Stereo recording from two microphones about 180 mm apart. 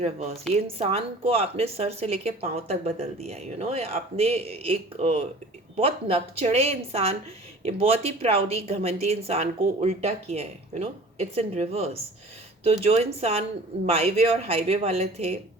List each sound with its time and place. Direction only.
0.0 s a woman's voice: 35° right (ahead or behind)